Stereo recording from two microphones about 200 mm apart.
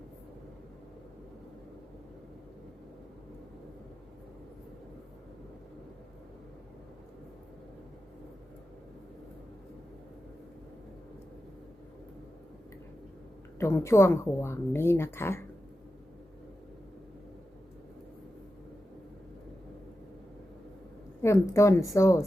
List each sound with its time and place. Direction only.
13.6 s a woman's voice: 15° left (ahead or behind)
21.2 s a woman's voice: 15° left (ahead or behind)